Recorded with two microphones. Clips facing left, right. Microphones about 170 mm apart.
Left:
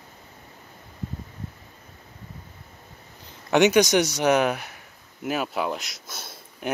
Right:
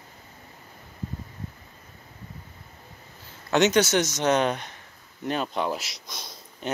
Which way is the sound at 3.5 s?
15° left (ahead or behind).